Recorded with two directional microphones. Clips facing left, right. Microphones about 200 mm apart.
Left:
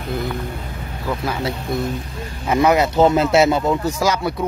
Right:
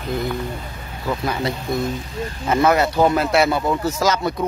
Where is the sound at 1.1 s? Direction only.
Centre (ahead or behind).